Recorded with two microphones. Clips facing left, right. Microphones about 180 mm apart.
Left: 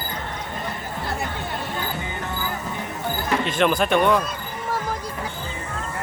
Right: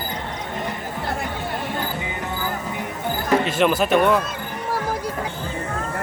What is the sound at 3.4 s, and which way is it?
Speech, 5° right (ahead or behind).